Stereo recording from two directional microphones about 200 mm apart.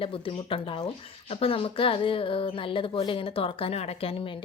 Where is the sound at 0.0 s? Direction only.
25° left (ahead or behind).